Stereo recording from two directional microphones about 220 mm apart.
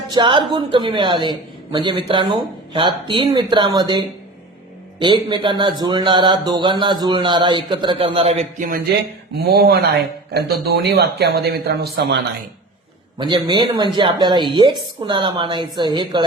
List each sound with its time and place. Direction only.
0.1 s a man's voice: 20° right (ahead or behind); by 8.8 s 35° right (ahead or behind)
9.5 s speech: 50° right (ahead or behind)
13.1 s a man's voice: 20° right (ahead or behind)